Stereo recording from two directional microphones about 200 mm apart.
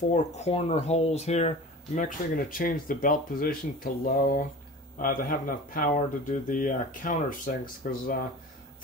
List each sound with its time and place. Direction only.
0.1 s speech: 35° left (ahead or behind)